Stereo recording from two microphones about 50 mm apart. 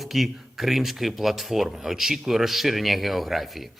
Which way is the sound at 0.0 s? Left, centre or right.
Centre.